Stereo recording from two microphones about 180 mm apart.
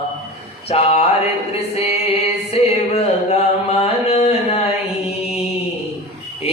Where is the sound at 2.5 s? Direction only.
35° left (ahead or behind).